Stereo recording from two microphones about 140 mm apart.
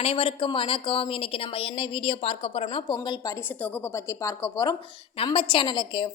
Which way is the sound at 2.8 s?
30° left (ahead or behind).